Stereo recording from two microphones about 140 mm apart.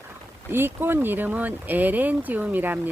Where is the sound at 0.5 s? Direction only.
15° right (ahead or behind).